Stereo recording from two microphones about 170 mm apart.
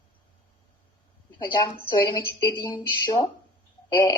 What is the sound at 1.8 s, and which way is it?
Speech, 25° left (ahead or behind).